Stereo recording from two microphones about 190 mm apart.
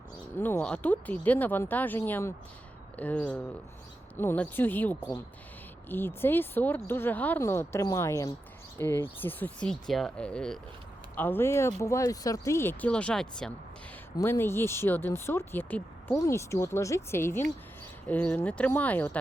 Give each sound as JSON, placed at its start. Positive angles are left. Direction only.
{"t": 0.3, "sound": "speech", "side_deg": 10}